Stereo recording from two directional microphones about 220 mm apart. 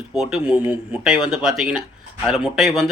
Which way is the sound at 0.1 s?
Centre (ahead or behind).